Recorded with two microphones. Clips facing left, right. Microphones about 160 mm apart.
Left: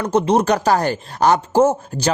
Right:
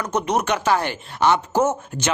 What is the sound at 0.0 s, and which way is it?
Speech, 30° left (ahead or behind).